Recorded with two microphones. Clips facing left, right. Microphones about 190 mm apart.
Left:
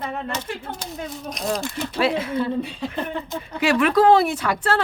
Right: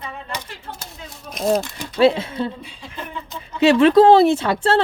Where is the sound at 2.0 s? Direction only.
25° right (ahead or behind).